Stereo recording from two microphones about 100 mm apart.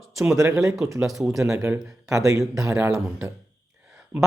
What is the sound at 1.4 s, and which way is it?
Speech, 30° right (ahead or behind).